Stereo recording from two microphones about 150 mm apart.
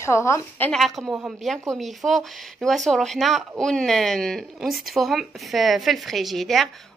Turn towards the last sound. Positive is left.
turn(degrees=0)  # may be behind; listen again after turning